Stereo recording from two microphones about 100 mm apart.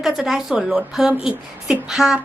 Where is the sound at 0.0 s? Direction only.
5° right (ahead or behind).